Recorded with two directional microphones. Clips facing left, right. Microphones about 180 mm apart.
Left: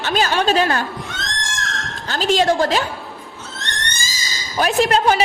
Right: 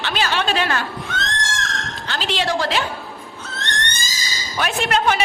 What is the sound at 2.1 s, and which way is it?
Speech, 45° left (ahead or behind).